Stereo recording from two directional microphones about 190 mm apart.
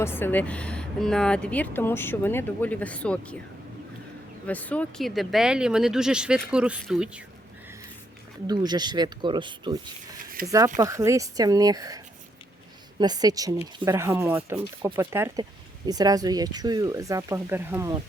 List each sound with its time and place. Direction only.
0.0 s speech: 10° left (ahead or behind)
4.4 s speech: 10° left (ahead or behind)
8.4 s speech: 20° right (ahead or behind)